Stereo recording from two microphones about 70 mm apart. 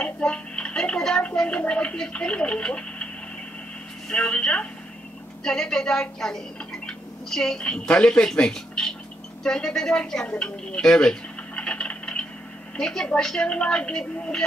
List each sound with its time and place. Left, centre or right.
0.0 s speech: centre
4.1 s a woman's voice: centre
10.2 s a sound: centre
12.7 s speech: centre